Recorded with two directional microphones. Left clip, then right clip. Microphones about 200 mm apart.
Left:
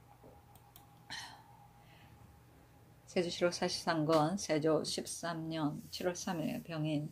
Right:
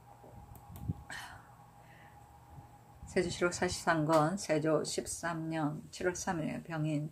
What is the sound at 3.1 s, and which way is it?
Speech, centre (ahead or behind).